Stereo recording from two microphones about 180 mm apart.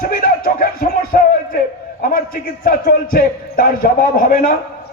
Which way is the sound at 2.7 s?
55° left (ahead or behind).